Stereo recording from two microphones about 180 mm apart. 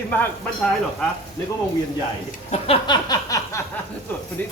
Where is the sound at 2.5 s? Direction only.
30° left (ahead or behind).